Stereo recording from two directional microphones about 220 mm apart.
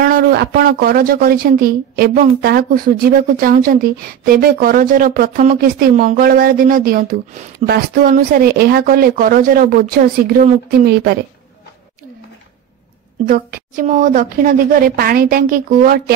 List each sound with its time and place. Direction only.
0.0 s speech: 45° right (ahead or behind)
13.2 s speech: 35° right (ahead or behind)